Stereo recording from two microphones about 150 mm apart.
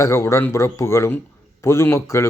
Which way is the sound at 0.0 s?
20° left (ahead or behind).